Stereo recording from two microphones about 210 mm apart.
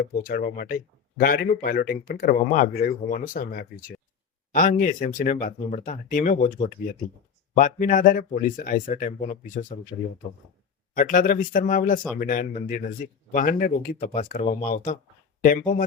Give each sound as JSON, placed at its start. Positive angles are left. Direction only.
{"t": 0.0, "sound": "speech", "side_deg": 45}
{"t": 10.9, "sound": "speech", "side_deg": 40}